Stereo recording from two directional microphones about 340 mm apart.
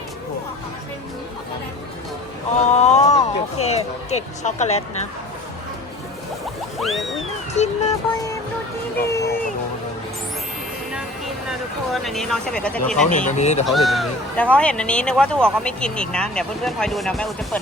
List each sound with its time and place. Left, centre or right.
2.7 s music: centre
6.7 s music: centre
7.5 s music: centre
9.0 s a sound: centre
11.9 s speech: centre
13.1 s music: left
13.7 s speech: centre